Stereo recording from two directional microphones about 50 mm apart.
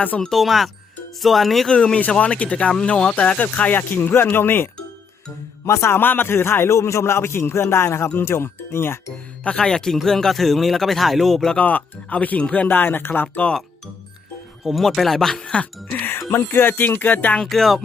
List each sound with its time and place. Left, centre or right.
0.3 s speech: centre
1.7 s speech: left
3.4 s speech: left
5.6 s speech: left
6.0 s speech: left
9.4 s speech: centre
11.5 s speech: left
12.6 s speech: left
14.6 s speech: centre
15.4 s speech: centre
15.9 s speech: left
16.3 s speech: left
17.4 s speech: centre